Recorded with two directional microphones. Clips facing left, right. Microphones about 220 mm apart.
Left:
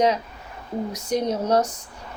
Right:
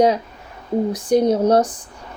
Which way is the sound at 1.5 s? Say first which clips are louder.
Right 5 dB; 30° right (ahead or behind).